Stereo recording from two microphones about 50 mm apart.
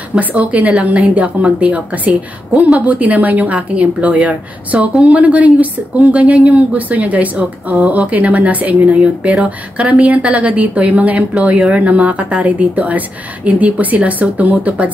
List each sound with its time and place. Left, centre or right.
0.2 s a woman's voice: right